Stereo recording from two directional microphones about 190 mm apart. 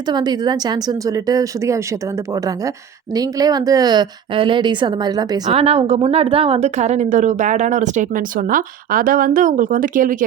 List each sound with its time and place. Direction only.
0.1 s speech: 20° right (ahead or behind)
3.2 s a woman's voice: 20° right (ahead or behind); by 10.2 s 45° right (ahead or behind)